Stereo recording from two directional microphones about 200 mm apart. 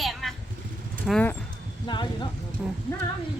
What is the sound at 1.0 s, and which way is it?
Speech, 5° left (ahead or behind).